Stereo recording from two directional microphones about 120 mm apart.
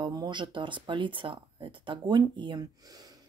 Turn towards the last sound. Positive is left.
turn(degrees=-30)  # may be behind; listen again after turning